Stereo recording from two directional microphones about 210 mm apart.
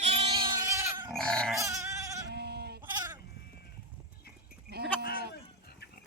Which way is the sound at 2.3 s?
50° right (ahead or behind).